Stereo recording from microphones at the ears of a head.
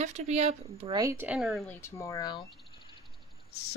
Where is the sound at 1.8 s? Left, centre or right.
Left.